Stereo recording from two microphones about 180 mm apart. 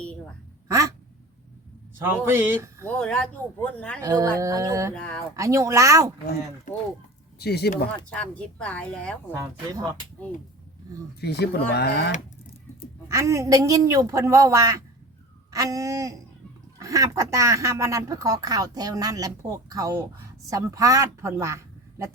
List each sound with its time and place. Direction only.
0.7 s a sound: 15° right (ahead or behind)
2.0 s a woman's voice: 10° right (ahead or behind)
2.8 s speech: 5° left (ahead or behind)
4.0 s a woman's voice: 15° right (ahead or behind)
4.9 s speech: 5° left (ahead or behind)
5.4 s a woman's voice: 15° right (ahead or behind)
6.7 s speech: 45° left (ahead or behind)
7.3 s speech: 65° left (ahead or behind)
8.1 s speech: 5° left (ahead or behind)
9.4 s a woman's voice: 20° right (ahead or behind)
11.2 s speech: 65° left (ahead or behind)
13.1 s a woman's voice: 15° right (ahead or behind)